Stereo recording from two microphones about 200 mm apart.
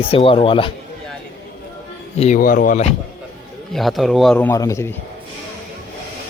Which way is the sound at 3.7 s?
Centre (ahead or behind).